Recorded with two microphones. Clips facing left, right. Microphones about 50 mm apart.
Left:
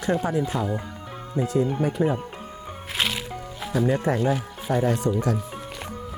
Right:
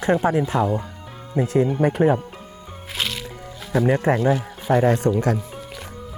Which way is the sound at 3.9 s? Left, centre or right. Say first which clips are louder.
Right 5 dB; right.